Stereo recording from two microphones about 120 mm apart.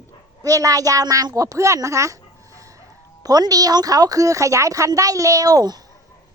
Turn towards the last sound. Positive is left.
turn(degrees=-30)  # may be behind; listen again after turning